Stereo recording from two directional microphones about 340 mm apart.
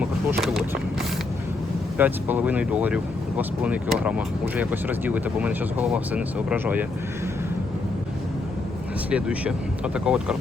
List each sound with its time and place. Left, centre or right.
2.0 s speech: centre
9.0 s speech: centre